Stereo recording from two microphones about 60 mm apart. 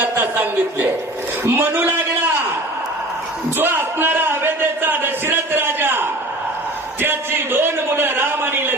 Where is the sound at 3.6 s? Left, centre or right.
Right.